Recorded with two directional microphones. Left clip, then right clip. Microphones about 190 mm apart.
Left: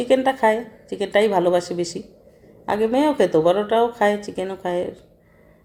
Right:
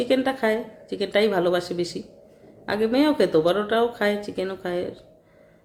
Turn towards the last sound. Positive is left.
turn(degrees=0)  # may be behind; listen again after turning